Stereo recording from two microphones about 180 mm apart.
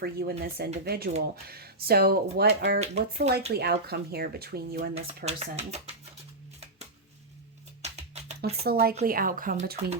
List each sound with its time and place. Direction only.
0.0 s speech: 60° right (ahead or behind)
2.7 s speech: 35° right (ahead or behind)
3.2 s speech: 65° right (ahead or behind)
4.8 s speech: 35° right (ahead or behind)
7.8 s music: 35° right (ahead or behind)
8.6 s speech: 60° right (ahead or behind)